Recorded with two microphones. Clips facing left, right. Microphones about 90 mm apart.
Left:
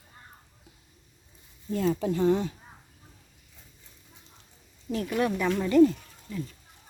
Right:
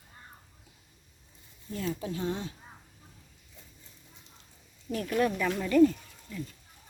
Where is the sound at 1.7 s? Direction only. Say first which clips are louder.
Left 8 dB; 90° left.